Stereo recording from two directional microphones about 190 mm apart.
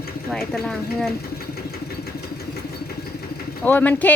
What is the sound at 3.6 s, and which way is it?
Speech, 10° left (ahead or behind).